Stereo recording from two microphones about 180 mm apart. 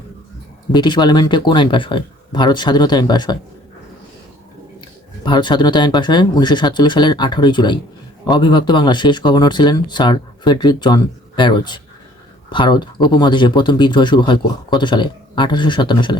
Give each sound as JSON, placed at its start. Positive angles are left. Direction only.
{"t": 0.7, "sound": "speech", "side_deg": 25}
{"t": 5.2, "sound": "speech", "side_deg": 25}